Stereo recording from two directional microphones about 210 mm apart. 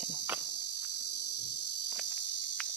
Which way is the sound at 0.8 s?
90° left.